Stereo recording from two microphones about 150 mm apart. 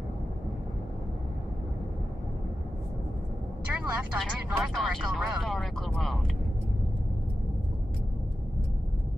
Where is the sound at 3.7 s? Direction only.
10° right (ahead or behind).